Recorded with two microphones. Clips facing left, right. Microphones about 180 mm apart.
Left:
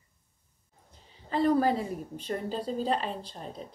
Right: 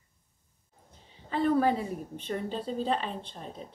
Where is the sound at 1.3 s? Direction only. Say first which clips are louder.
Left 1 dB; 35° left (ahead or behind).